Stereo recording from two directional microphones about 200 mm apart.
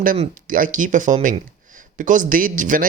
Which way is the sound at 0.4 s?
40° right (ahead or behind).